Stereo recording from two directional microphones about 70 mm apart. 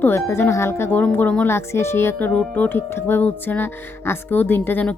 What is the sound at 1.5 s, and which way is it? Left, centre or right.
Speech, left.